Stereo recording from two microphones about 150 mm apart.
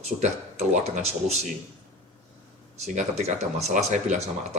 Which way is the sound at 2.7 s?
50° right (ahead or behind).